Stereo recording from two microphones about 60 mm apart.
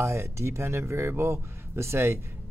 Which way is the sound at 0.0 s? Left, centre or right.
Right.